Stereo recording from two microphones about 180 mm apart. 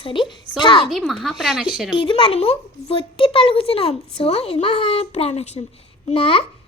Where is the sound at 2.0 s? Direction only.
30° left (ahead or behind).